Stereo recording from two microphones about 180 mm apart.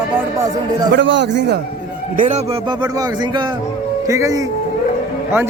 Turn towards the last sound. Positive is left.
turn(degrees=-15)  # may be behind; listen again after turning